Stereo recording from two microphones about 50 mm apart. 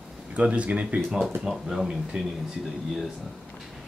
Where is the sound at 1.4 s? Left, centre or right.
Centre.